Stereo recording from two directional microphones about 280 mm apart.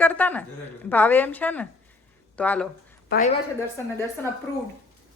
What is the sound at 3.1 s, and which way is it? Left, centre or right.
Speech, left.